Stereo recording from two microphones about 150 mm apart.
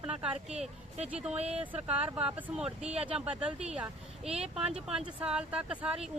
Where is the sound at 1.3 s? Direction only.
45° right (ahead or behind).